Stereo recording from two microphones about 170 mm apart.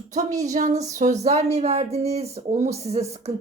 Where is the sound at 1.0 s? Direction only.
40° right (ahead or behind).